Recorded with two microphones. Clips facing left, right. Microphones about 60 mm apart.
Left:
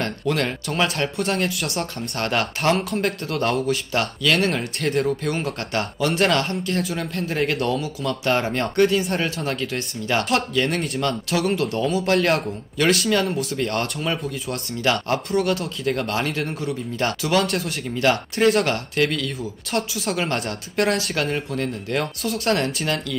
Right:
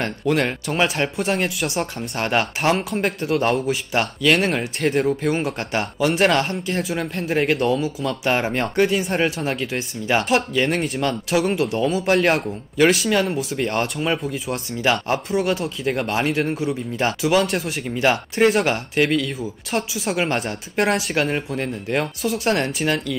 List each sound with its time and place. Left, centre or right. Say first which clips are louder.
0.3 s speech: right 3 dB; centre
0.7 s speech: right 1 dB; right
7.5 s speech: right 3 dB; centre
16.4 s speech: right 3 dB; centre